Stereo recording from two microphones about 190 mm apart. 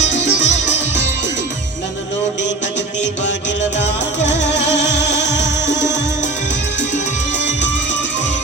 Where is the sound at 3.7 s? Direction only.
65° left (ahead or behind).